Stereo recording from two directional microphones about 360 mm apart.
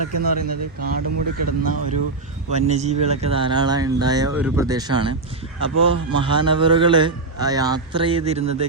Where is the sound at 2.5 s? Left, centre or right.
Centre.